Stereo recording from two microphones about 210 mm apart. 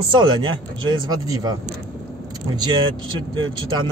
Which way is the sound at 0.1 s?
20° right (ahead or behind).